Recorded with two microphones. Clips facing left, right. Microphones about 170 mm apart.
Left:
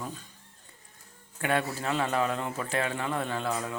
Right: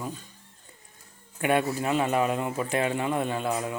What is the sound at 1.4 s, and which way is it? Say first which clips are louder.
Speech: right 4 dB; 15° right (ahead or behind).